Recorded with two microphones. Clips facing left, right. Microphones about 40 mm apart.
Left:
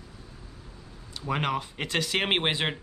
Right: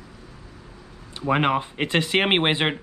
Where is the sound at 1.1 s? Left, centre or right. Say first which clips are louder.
Right 7 dB; right.